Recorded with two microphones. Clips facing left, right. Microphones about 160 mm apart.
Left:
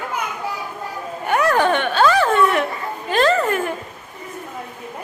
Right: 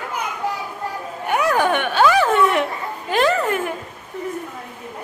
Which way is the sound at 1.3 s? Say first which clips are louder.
Left 1 dB; 10° right (ahead or behind).